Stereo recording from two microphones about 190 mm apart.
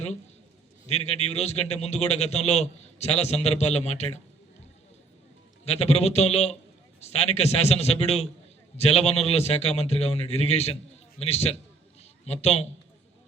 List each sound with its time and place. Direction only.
0.9 s a man's voice: 35° left (ahead or behind)
5.6 s a man's voice: 35° left (ahead or behind)